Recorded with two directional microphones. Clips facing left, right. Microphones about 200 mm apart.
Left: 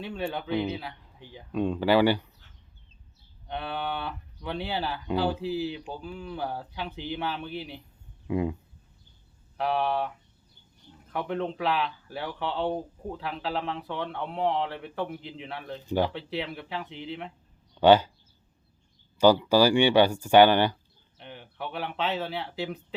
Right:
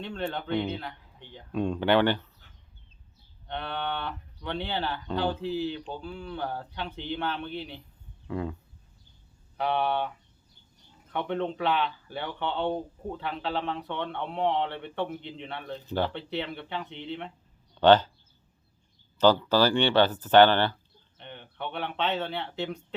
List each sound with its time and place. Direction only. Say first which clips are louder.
0.0 s speech: left 1 dB; 10° left (ahead or behind)
3.4 s speech: left 1 dB; 5° left (ahead or behind)
8.3 s speech: left 5 dB; 15° left (ahead or behind)
9.6 s speech: even; centre (ahead or behind)
11.1 s speech: even; 5° left (ahead or behind)
19.2 s speech: left 2 dB; 10° left (ahead or behind)